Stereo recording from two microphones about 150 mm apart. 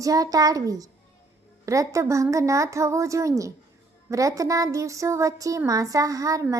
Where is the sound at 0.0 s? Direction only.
25° right (ahead or behind).